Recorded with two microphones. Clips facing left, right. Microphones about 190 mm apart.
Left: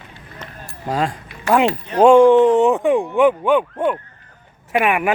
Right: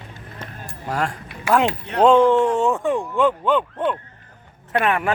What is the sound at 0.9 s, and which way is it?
Speech, 20° left (ahead or behind).